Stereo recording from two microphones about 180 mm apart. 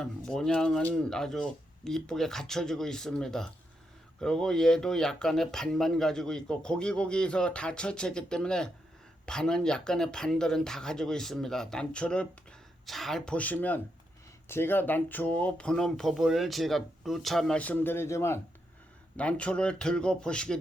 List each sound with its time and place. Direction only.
0.0 s speech: 5° left (ahead or behind)